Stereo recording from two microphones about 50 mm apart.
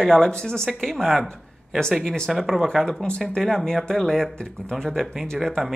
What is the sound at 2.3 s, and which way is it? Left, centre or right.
Speech, centre.